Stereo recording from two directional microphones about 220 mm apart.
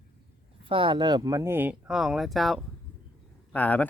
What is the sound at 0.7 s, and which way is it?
Speech, 25° right (ahead or behind).